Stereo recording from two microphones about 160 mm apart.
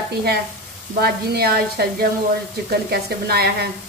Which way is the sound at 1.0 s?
80° right.